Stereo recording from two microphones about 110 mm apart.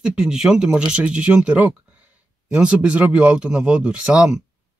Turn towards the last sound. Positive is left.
turn(degrees=-10)  # may be behind; listen again after turning